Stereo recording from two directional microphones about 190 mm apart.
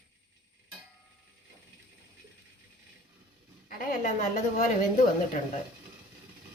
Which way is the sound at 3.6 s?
45° left (ahead or behind).